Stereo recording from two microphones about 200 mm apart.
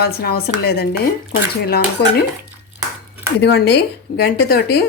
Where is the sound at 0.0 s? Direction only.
50° left (ahead or behind).